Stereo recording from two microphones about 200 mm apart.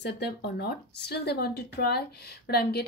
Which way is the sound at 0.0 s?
55° left (ahead or behind).